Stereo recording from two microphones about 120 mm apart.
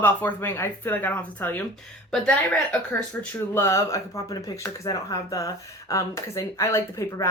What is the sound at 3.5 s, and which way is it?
Speech, 25° left (ahead or behind).